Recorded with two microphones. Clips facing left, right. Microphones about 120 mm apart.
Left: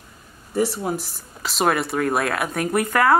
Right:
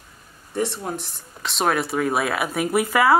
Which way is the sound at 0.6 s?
5° left (ahead or behind).